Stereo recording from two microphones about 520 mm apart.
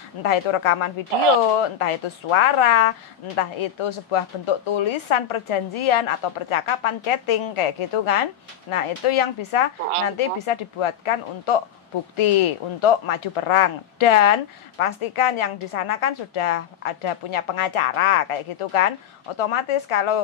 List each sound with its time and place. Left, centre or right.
0.2 s speech: left